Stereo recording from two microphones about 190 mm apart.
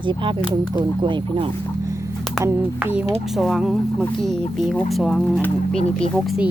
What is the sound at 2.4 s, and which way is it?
Speech, 10° right (ahead or behind).